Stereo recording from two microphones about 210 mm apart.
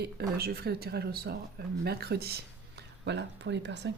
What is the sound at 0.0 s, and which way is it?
Speech, 50° right (ahead or behind).